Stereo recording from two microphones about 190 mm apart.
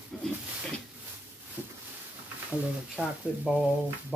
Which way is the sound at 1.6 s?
10° right (ahead or behind).